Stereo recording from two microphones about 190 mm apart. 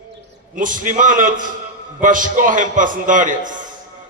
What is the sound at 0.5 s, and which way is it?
A man's voice, 45° right (ahead or behind).